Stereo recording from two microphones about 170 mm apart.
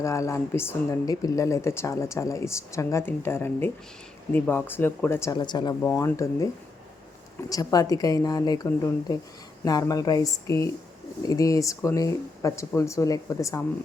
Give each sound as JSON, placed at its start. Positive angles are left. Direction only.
{"t": 0.0, "sound": "a woman's voice", "side_deg": 15}
{"t": 7.5, "sound": "speech", "side_deg": 20}